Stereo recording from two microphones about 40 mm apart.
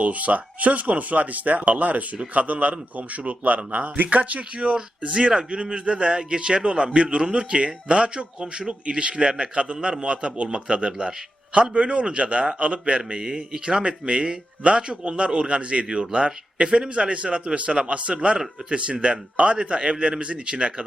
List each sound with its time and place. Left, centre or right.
0.0 s speech: right
4.5 s a man's voice: right
13.0 s speech: centre
13.8 s a man's voice: right